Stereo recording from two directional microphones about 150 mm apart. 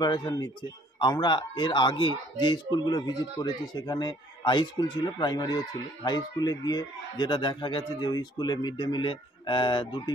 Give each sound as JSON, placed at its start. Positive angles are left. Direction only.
{"t": 0.0, "sound": "speech", "side_deg": 25}